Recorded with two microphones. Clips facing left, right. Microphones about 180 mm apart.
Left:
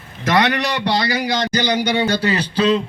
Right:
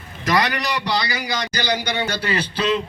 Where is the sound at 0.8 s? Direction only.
25° left (ahead or behind).